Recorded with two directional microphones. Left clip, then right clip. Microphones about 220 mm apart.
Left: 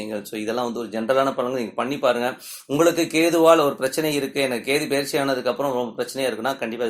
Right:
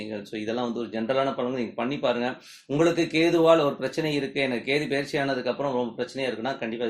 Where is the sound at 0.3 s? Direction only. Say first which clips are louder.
Left 3 dB; 25° left (ahead or behind).